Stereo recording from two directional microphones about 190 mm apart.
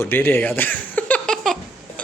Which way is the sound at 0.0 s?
10° left (ahead or behind).